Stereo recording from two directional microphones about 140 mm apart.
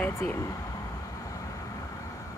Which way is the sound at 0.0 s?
15° left (ahead or behind).